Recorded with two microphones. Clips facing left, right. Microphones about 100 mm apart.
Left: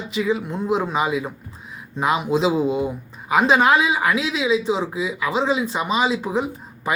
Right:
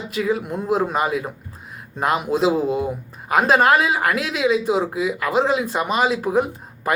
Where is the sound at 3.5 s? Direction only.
50° right (ahead or behind).